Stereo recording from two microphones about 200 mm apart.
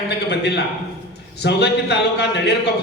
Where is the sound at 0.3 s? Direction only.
55° left (ahead or behind).